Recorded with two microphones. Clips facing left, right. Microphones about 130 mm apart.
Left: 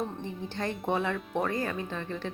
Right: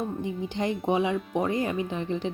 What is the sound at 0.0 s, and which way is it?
Speech, 10° right (ahead or behind).